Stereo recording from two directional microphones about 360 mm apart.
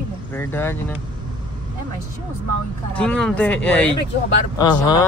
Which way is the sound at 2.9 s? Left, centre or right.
Centre.